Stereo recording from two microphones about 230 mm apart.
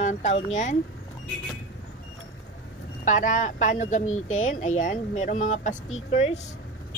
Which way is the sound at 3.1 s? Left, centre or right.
Left.